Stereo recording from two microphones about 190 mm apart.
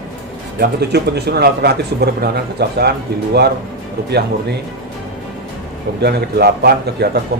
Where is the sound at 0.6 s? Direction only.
60° right (ahead or behind).